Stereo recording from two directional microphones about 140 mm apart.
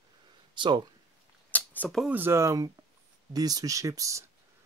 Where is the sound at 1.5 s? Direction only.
10° left (ahead or behind).